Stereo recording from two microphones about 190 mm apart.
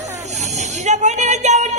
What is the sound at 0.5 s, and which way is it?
Music, 35° right (ahead or behind).